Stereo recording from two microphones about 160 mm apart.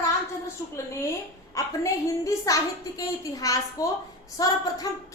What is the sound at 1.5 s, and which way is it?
A woman's voice, 20° left (ahead or behind).